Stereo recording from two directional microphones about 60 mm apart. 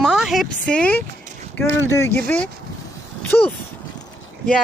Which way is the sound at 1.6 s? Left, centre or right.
Left.